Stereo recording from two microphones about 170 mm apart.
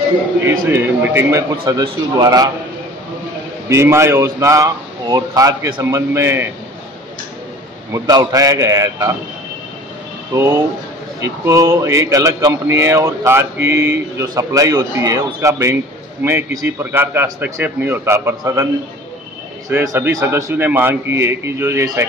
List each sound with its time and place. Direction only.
0.5 s a man's voice: 15° right (ahead or behind)
3.6 s a man's voice: 15° right (ahead or behind)
7.9 s a man's voice: 20° right (ahead or behind)
10.3 s a man's voice: 15° right (ahead or behind)
19.7 s a man's voice: 15° right (ahead or behind)